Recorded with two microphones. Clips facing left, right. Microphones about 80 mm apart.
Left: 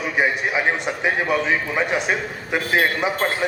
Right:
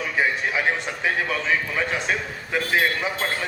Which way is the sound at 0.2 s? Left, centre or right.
Left.